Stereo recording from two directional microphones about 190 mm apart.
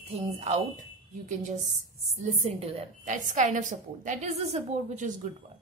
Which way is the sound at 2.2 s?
30° right (ahead or behind).